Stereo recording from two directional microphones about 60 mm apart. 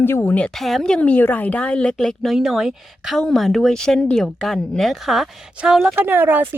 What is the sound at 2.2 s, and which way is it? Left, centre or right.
A woman's voice, centre.